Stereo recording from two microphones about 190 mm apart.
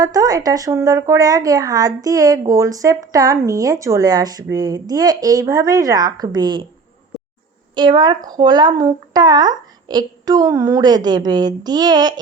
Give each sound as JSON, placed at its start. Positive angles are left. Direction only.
{"t": 0.0, "sound": "speech", "side_deg": -20}
{"t": 7.8, "sound": "speech", "side_deg": -25}